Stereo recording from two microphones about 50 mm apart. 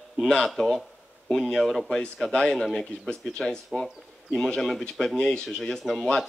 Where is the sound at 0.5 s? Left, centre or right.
Centre.